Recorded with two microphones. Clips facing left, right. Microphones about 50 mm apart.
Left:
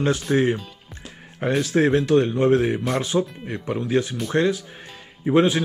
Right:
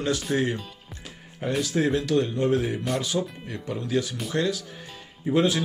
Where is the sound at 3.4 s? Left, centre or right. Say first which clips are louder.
Left 5 dB; left.